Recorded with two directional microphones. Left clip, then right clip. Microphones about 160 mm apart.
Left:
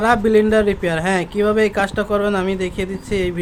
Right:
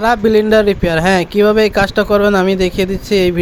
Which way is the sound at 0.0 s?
40° right (ahead or behind).